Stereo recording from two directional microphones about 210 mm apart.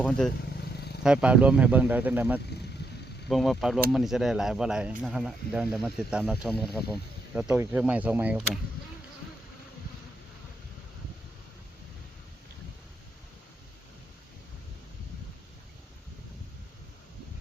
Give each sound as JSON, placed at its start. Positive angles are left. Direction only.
{"t": 0.5, "sound": "vehicle", "side_deg": 50}
{"t": 1.0, "sound": "speech", "side_deg": -5}